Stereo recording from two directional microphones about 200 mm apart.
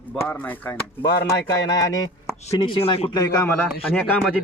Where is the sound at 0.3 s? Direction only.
10° left (ahead or behind).